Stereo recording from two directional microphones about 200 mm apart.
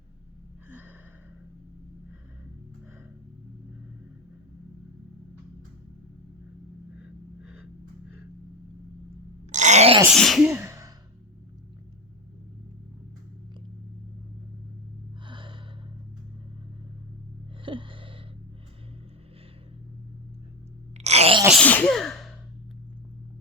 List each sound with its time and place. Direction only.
9.5 s groan: 35° right (ahead or behind)
10.1 s speech: centre (ahead or behind)
10.5 s sigh: 15° right (ahead or behind)
15.3 s gasp: 25° right (ahead or behind)
17.7 s a sound: 25° right (ahead or behind)
21.0 s wail: 30° right (ahead or behind)
21.5 s sneeze: 5° left (ahead or behind)